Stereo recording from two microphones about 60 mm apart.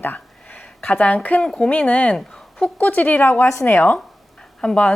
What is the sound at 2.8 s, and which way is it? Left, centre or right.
Speech, left.